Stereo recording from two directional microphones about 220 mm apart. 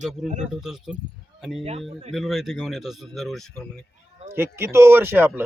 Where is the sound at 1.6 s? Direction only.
25° right (ahead or behind).